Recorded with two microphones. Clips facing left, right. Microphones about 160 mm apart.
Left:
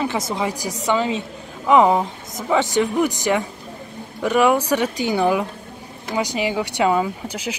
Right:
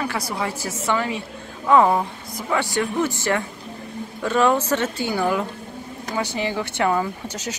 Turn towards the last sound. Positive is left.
turn(degrees=10)  # may be behind; listen again after turning